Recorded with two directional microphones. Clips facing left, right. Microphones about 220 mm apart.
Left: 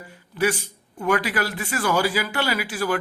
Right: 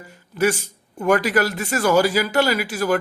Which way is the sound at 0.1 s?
45° right (ahead or behind).